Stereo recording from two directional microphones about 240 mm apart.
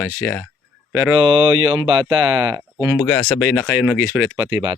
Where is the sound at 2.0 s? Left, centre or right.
Centre.